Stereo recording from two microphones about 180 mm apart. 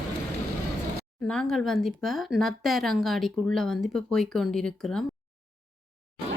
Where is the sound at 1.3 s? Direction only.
5° left (ahead or behind).